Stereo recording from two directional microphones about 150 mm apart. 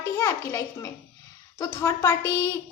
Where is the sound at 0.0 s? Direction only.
20° left (ahead or behind).